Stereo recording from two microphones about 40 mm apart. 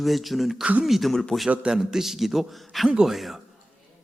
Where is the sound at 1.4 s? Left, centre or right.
Right.